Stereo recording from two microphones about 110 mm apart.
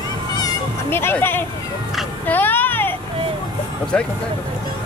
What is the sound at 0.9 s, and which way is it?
Music, 20° left (ahead or behind).